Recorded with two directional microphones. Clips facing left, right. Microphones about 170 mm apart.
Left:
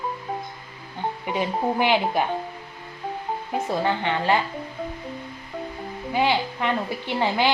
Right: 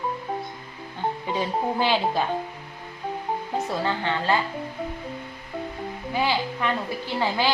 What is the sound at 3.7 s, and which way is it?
Speech, 20° left (ahead or behind).